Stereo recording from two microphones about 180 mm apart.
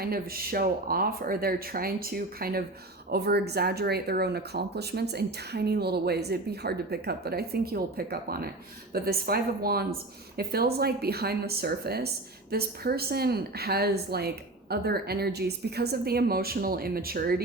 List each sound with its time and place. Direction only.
0.0 s speech: 55° right (ahead or behind)